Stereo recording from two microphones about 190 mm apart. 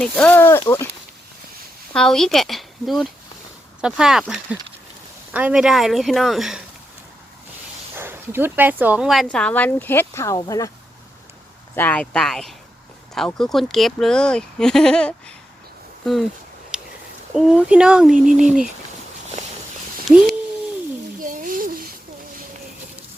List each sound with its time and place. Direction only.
0.0 s speech: 5° left (ahead or behind)
1.9 s speech: 5° left (ahead or behind)
7.9 s speech: 10° right (ahead or behind); by 10.7 s 20° left (ahead or behind)
11.7 s speech: 10° left (ahead or behind)
16.7 s a sound: 5° right (ahead or behind)
17.3 s speech: 5° right (ahead or behind)
20.1 s speech: centre (ahead or behind)
21.2 s a sound: 45° right (ahead or behind)